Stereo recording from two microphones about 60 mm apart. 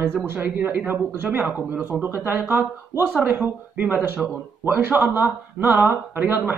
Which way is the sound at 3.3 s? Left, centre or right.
Centre.